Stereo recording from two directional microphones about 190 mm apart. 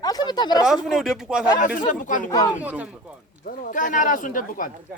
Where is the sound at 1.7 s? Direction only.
45° left (ahead or behind).